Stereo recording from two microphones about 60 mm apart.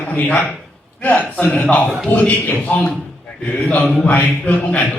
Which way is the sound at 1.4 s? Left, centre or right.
Centre.